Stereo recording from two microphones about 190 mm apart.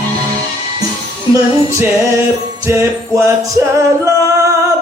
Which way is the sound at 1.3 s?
15° right (ahead or behind).